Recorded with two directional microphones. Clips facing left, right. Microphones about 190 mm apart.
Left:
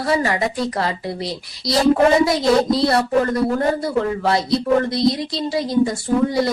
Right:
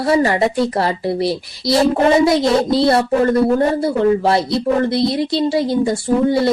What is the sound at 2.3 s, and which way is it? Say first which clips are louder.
Speech: right 2 dB; centre (ahead or behind).